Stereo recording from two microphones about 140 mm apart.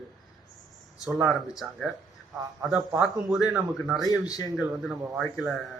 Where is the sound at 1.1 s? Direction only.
Centre (ahead or behind).